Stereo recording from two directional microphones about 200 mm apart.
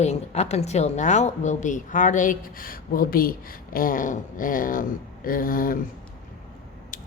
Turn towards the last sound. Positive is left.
turn(degrees=45)  # may be behind; listen again after turning